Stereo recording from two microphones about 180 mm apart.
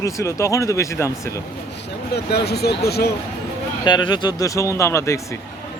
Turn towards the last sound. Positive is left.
turn(degrees=15)  # may be behind; listen again after turning